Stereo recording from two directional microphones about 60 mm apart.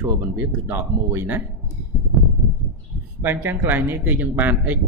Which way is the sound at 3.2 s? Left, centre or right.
Right.